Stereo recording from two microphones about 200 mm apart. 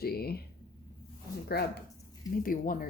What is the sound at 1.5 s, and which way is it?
Speech, 50° left (ahead or behind).